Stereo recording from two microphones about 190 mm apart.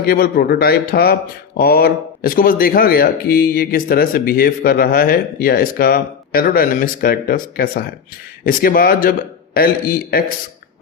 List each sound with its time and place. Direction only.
0.0 s speech: 50° left (ahead or behind)